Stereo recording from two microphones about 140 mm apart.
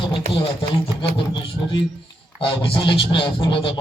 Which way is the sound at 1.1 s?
35° left (ahead or behind).